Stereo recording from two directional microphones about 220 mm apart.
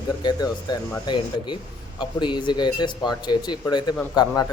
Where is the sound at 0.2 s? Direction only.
20° left (ahead or behind).